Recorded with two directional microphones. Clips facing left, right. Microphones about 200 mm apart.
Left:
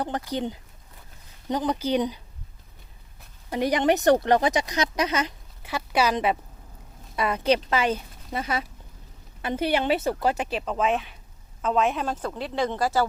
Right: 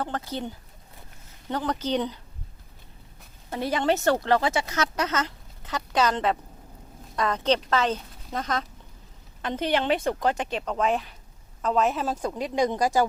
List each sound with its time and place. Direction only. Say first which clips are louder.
0.3 s speech: left 4 dB; 15° left (ahead or behind)
3.5 s a woman's voice: left 3 dB; 15° left (ahead or behind); by 13.1 s 15° right (ahead or behind)